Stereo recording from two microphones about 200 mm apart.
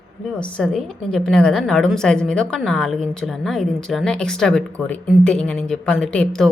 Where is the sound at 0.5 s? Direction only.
5° left (ahead or behind).